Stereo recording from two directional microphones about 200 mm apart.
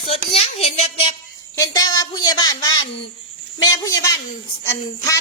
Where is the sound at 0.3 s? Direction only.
30° left (ahead or behind).